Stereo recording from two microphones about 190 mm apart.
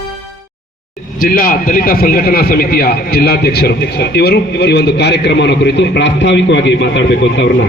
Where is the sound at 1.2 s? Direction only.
45° left (ahead or behind).